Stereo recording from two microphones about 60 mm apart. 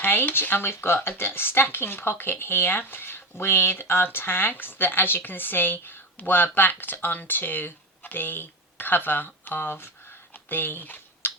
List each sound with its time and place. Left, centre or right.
0.0 s speech: left
10.3 s typing: left